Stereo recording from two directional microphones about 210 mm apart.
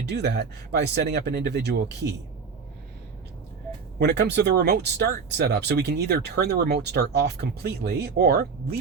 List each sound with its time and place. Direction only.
0.1 s speech: 55° right (ahead or behind)
3.9 s speech: 50° right (ahead or behind)